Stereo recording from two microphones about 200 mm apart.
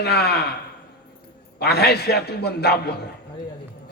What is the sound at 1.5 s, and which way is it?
A man's voice, 55° left (ahead or behind).